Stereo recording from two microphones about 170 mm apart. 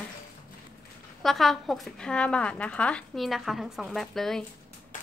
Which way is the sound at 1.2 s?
Centre (ahead or behind).